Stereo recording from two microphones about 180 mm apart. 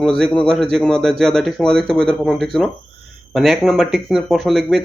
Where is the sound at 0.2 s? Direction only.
5° left (ahead or behind).